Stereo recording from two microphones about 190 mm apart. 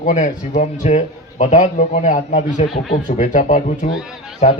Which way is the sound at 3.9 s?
5° right (ahead or behind).